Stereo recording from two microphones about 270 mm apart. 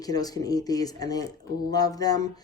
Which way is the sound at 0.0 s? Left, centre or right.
Centre.